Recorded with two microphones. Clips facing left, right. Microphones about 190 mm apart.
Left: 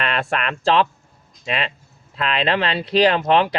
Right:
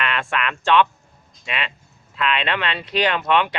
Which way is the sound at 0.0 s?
40° left (ahead or behind).